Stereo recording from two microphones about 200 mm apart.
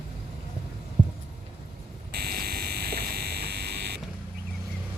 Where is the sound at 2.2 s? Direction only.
50° right (ahead or behind).